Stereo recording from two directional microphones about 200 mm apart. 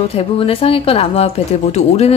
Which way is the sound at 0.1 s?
30° left (ahead or behind).